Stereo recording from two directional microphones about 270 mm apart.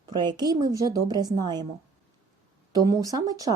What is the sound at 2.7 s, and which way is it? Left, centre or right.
Speech, centre.